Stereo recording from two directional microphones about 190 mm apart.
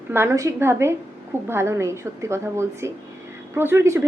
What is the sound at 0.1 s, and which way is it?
A woman's voice, 15° right (ahead or behind).